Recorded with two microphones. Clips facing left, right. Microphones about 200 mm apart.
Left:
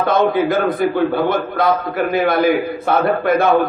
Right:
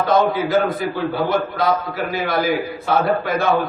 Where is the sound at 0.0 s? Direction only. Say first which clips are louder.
Left 2 dB; 55° left (ahead or behind).